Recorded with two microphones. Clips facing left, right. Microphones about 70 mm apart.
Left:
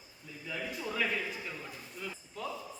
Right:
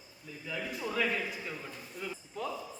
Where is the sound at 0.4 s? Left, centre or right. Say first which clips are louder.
Right 1 dB; centre.